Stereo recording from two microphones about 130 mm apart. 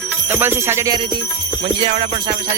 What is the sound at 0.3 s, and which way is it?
Jingle bell, 15° right (ahead or behind).